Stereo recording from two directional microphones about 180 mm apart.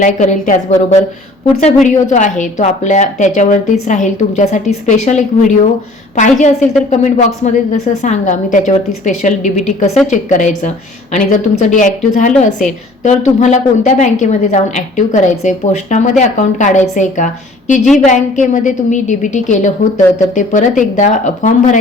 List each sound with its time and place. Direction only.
0.0 s a woman's voice: 45° left (ahead or behind)
1.6 s a woman's voice: 45° left (ahead or behind)